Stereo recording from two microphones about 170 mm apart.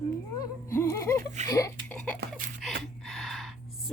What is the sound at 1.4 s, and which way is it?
Speech, 20° left (ahead or behind).